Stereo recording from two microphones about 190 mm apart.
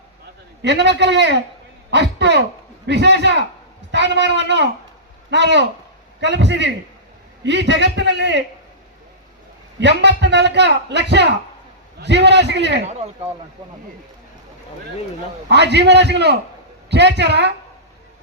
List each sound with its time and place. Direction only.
0.6 s a man's voice: 65° right (ahead or behind)
9.8 s a man's voice: 65° right (ahead or behind)
15.4 s a man's voice: 65° right (ahead or behind)